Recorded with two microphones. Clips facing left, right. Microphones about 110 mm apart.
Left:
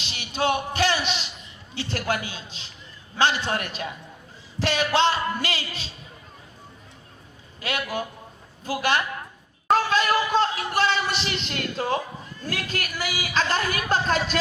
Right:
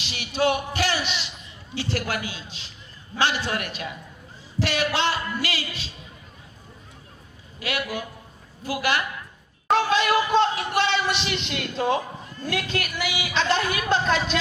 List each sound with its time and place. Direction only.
0.0 s a man's voice: 30° left (ahead or behind)
7.6 s a man's voice: 30° left (ahead or behind)
9.6 s a man's voice: 45° left (ahead or behind)